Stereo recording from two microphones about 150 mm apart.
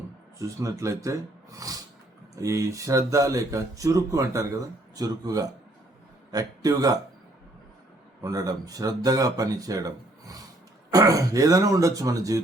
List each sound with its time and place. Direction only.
0.3 s speech: 20° right (ahead or behind)
8.2 s speech: 25° right (ahead or behind)